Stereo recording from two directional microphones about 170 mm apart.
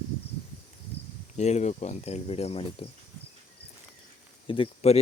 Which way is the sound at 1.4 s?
40° left (ahead or behind).